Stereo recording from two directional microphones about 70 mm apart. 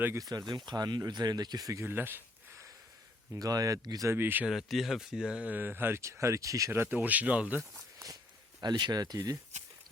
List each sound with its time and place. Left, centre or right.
0.2 s speech: right
1.8 s a sound: right
3.3 s speech: right
4.1 s speech: right
4.4 s speech: centre
5.5 s speech: right
6.0 s speech: right
6.7 s speech: right
8.6 s speech: right